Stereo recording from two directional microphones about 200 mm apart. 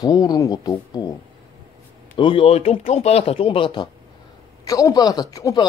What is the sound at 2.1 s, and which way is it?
Speech, 25° left (ahead or behind).